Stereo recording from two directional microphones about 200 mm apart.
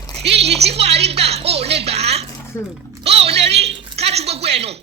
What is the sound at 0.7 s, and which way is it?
A woman's voice, 30° right (ahead or behind).